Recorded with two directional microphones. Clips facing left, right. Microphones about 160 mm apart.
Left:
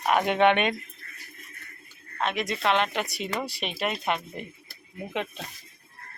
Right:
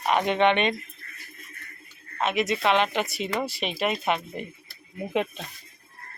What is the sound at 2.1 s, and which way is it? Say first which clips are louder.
A woman's voice: right 4 dB; 5° right (ahead or behind).